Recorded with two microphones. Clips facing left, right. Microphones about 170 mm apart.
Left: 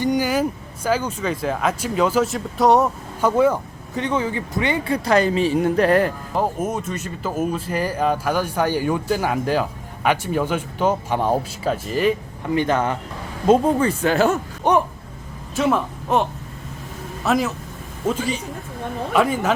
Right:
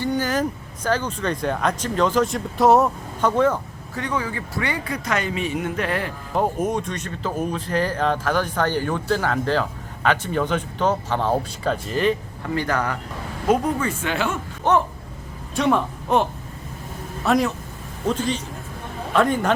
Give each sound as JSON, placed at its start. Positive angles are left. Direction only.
{"t": 0.0, "sound": "vehicle", "side_deg": 10}
{"t": 0.9, "sound": "speech", "side_deg": 10}
{"t": 3.9, "sound": "speech", "side_deg": 20}
{"t": 6.3, "sound": "speech", "side_deg": 0}
{"t": 12.5, "sound": "speech", "side_deg": 20}
{"t": 14.6, "sound": "speech", "side_deg": 15}
{"t": 15.5, "sound": "speech", "side_deg": 0}